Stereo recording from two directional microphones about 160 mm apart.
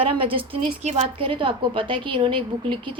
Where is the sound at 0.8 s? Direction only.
45° right (ahead or behind).